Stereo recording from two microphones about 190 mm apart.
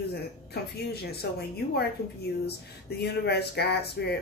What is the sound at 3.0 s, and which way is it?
Speech, 60° left (ahead or behind).